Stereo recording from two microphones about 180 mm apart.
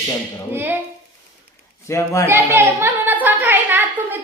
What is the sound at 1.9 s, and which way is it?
Speech, 15° left (ahead or behind).